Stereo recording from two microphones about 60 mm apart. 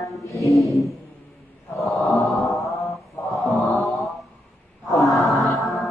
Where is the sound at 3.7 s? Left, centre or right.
Centre.